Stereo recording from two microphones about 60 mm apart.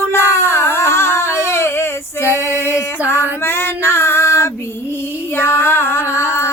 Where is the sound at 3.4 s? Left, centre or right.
Left.